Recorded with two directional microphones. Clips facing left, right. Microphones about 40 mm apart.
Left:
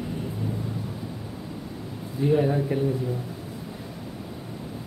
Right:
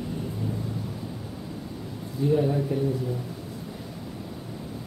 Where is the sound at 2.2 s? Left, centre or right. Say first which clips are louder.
Left 1 dB; left.